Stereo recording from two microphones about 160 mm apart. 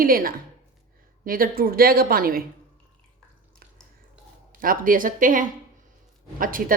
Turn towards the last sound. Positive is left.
turn(degrees=-60)  # may be behind; listen again after turning